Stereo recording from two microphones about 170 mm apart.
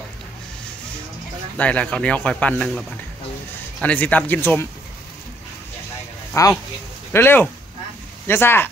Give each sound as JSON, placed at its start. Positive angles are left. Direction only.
{"t": 1.6, "sound": "speech", "side_deg": 10}
{"t": 3.8, "sound": "speech", "side_deg": 10}
{"t": 6.4, "sound": "speech", "side_deg": 20}